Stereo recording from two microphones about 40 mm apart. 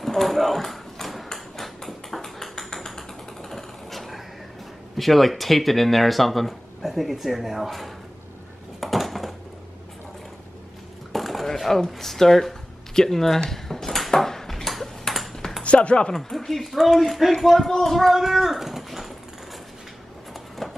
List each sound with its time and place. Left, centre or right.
0.0 s a sound: centre
4.9 s speech: centre
8.8 s dishes: centre
11.1 s a sound: centre
11.5 s speech: centre
13.4 s ping: centre
15.6 s speech: left
16.1 s speech: centre